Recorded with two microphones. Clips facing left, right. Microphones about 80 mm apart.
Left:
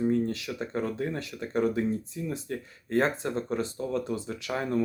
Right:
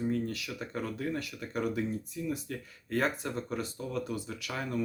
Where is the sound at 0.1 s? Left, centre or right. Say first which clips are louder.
Left 6 dB; left.